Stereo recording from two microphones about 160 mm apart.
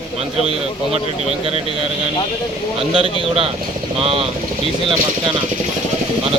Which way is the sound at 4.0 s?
35° right (ahead or behind).